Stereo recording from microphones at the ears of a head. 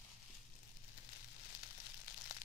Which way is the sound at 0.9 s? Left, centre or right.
Left.